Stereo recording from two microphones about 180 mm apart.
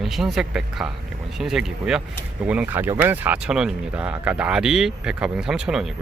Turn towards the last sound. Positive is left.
turn(degrees=0)  # may be behind; listen again after turning